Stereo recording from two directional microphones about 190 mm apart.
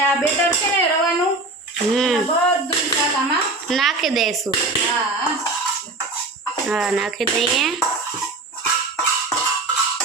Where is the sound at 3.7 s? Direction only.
Centre (ahead or behind).